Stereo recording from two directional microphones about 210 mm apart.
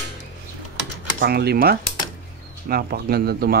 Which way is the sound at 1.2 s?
50° right (ahead or behind).